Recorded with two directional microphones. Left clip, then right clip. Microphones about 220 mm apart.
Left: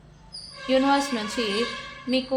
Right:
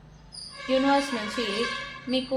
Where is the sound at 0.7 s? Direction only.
30° left (ahead or behind).